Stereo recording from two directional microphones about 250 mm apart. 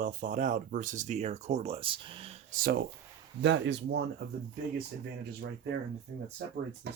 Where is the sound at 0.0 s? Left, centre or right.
Right.